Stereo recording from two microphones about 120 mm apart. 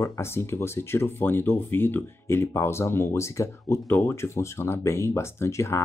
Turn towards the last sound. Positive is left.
turn(degrees=25)  # may be behind; listen again after turning